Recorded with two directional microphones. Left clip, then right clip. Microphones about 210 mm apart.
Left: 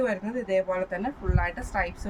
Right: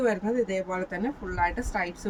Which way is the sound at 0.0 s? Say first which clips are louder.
Right 3 dB; 10° left (ahead or behind).